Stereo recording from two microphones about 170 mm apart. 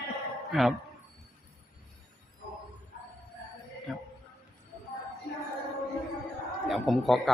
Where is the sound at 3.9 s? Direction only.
Centre (ahead or behind).